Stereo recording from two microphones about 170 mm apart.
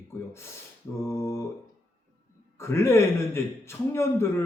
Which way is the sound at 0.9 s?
15° left (ahead or behind).